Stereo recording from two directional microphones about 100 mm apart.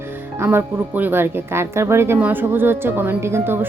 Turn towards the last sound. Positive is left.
turn(degrees=-20)  # may be behind; listen again after turning